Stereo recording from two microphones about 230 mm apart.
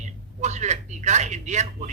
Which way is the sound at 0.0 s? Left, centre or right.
Right.